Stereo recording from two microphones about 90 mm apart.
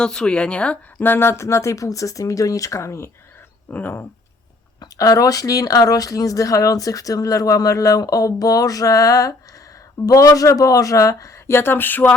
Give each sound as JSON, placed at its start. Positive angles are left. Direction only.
{"t": 0.0, "sound": "speech", "side_deg": 10}
{"t": 3.7, "sound": "speech", "side_deg": 20}
{"t": 4.8, "sound": "speech", "side_deg": 40}